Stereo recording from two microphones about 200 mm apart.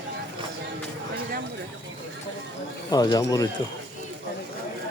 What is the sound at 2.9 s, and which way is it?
Speech, 20° left (ahead or behind).